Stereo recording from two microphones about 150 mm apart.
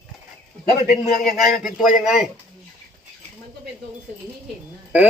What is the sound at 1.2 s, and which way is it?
Speech, 70° left (ahead or behind).